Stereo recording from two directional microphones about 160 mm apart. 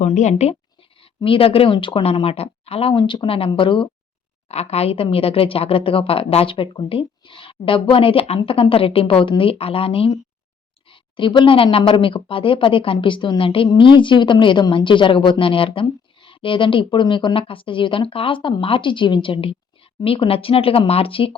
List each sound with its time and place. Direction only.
0.0 s speech: 50° left (ahead or behind)
1.0 s a woman's voice: 35° left (ahead or behind)